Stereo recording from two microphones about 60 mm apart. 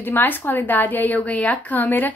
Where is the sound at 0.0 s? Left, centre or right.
Left.